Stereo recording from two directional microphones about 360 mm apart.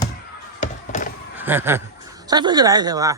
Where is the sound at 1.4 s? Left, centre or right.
Centre.